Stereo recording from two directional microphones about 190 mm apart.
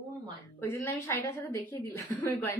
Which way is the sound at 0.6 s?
10° left (ahead or behind).